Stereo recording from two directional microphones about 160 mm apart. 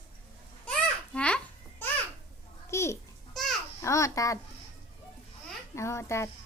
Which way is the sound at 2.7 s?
15° left (ahead or behind).